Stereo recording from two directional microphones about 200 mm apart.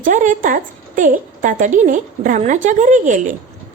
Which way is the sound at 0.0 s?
40° right (ahead or behind).